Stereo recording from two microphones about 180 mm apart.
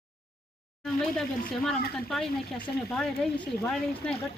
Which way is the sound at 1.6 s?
Centre (ahead or behind).